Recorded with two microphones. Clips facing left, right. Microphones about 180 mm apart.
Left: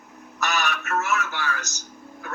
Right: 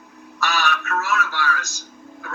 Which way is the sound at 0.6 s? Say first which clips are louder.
Right 2 dB; 20° left (ahead or behind).